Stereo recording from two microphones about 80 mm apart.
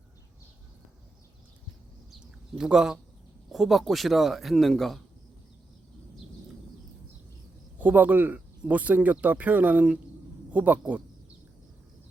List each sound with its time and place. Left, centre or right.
2.6 s a man's voice: centre
7.8 s speech: right